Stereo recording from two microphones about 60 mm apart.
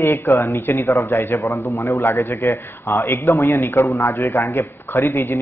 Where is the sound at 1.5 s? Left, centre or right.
Left.